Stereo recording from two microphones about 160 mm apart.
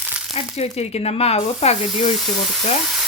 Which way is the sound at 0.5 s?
40° left (ahead or behind).